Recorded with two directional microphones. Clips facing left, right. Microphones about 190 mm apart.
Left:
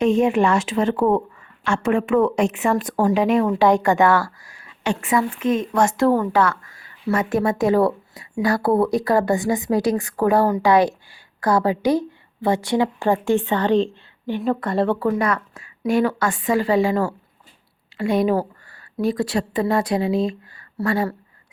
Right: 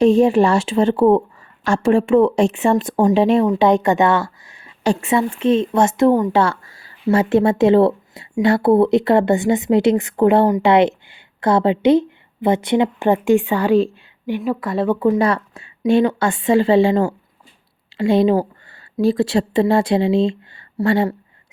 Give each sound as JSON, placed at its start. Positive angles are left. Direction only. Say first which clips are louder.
{"t": 0.0, "sound": "a woman's voice", "louder": "right 4 dB", "side_deg": -35}
{"t": 14.9, "sound": "a woman's voice", "louder": "right 5 dB", "side_deg": -25}